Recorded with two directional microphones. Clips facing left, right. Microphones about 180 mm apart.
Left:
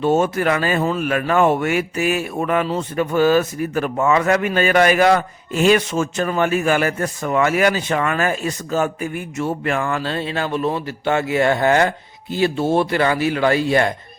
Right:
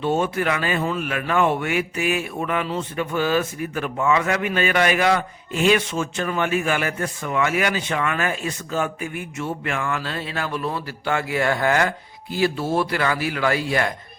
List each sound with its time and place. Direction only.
0.0 s a man's voice: 45° left (ahead or behind); by 13.9 s 25° left (ahead or behind)